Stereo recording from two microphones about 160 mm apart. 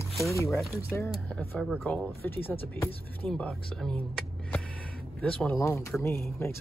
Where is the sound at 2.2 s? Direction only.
15° left (ahead or behind).